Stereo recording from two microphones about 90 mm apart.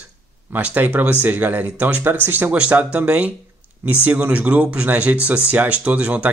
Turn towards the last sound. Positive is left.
turn(degrees=-15)  # may be behind; listen again after turning